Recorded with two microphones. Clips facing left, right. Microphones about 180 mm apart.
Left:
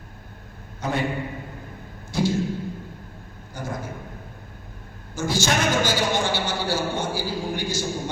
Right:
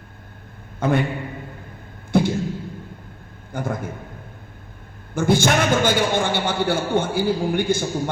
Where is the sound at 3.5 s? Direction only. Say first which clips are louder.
Right 5 dB; 55° right (ahead or behind).